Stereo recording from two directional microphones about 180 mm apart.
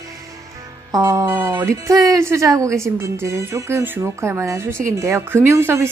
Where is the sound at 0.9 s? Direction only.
20° right (ahead or behind).